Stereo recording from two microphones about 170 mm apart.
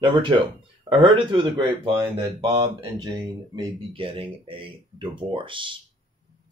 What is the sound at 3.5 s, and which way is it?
Speech, 30° right (ahead or behind).